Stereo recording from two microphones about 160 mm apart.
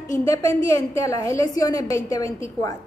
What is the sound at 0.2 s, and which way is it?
A woman's voice, 20° left (ahead or behind).